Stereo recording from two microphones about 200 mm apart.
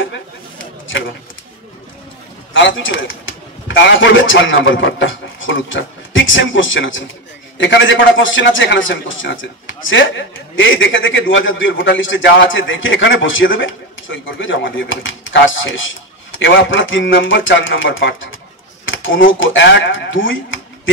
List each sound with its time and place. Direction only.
2.5 s a man's voice: 70° left (ahead or behind)
19.4 s speech: 65° left (ahead or behind)